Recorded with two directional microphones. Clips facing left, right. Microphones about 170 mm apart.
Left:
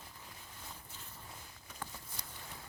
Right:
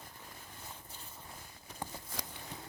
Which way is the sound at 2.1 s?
90° right.